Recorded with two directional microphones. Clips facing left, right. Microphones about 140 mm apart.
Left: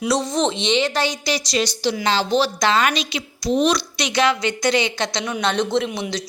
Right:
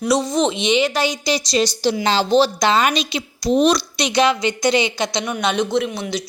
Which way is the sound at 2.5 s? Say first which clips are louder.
Right 2 dB; 20° right (ahead or behind).